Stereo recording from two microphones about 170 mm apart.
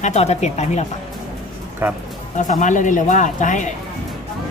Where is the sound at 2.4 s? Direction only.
50° left (ahead or behind).